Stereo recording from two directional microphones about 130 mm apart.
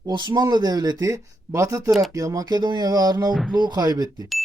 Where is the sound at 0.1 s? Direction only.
30° right (ahead or behind).